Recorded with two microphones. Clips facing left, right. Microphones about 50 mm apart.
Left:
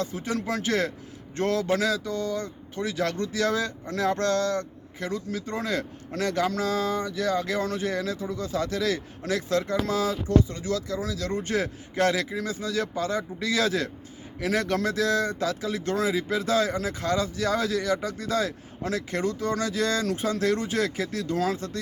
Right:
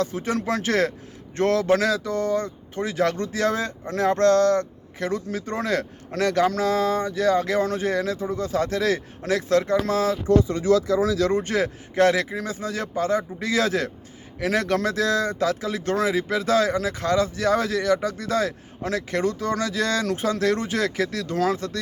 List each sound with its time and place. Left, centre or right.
0.0 s speech: right
10.2 s speech: right
11.3 s speech: right